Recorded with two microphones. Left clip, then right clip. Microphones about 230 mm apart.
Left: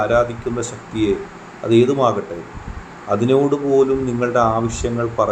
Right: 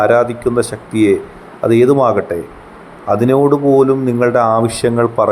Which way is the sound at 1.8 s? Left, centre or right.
Right.